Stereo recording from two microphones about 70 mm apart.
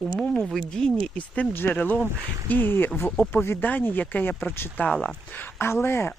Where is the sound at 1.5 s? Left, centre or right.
Left.